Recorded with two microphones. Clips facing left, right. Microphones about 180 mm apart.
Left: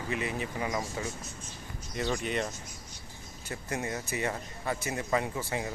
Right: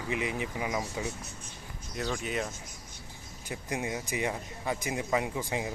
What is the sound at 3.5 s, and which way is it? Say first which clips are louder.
Speech: right 1 dB; 15° right (ahead or behind).